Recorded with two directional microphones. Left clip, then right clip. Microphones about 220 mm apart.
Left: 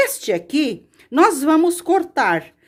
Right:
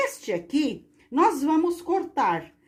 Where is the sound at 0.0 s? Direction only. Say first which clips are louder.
Left 8 dB; 35° left (ahead or behind).